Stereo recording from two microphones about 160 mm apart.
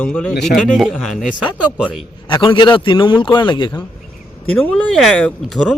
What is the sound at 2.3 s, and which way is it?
A man's voice, 30° left (ahead or behind).